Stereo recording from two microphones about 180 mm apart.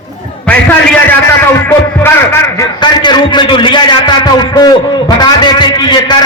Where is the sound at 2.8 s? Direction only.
25° left (ahead or behind).